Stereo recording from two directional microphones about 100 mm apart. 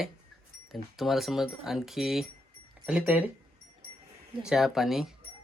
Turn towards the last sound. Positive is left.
turn(degrees=0)  # may be behind; listen again after turning